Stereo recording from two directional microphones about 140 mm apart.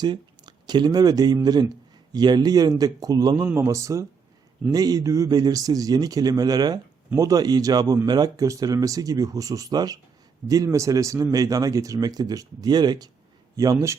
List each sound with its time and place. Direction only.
0.0 s speech: 30° right (ahead or behind)